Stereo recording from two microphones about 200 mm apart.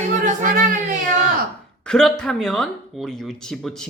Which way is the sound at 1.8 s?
5° left (ahead or behind).